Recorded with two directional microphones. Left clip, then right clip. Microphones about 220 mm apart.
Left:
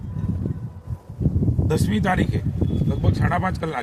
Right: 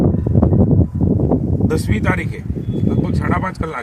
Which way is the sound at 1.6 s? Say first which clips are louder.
Left 1 dB; 10° left (ahead or behind).